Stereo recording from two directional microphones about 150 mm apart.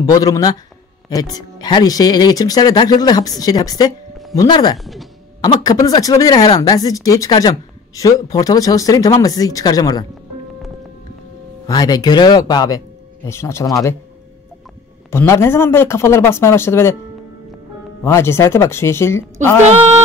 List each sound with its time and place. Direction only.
0.0 s speech: 25° left (ahead or behind)
4.7 s speech: centre (ahead or behind)
5.4 s speech: 25° left (ahead or behind)
11.6 s speech: 25° left (ahead or behind)
15.0 s a man's voice: 15° left (ahead or behind)
18.0 s a man's voice: 15° left (ahead or behind)